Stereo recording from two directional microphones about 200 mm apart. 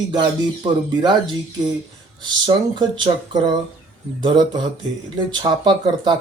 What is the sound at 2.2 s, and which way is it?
Speech, 25° right (ahead or behind).